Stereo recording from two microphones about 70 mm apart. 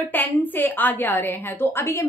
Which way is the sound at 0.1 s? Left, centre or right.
Left.